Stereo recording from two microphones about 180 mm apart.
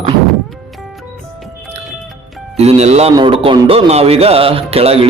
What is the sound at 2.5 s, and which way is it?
Speech, 35° right (ahead or behind).